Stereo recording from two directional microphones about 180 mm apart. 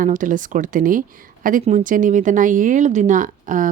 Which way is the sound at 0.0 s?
45° right (ahead or behind).